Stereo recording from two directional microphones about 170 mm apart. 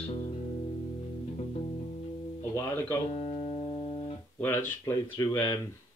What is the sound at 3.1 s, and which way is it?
Music, 40° left (ahead or behind).